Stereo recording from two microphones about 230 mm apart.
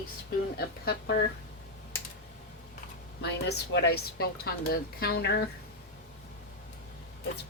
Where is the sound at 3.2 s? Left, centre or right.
Left.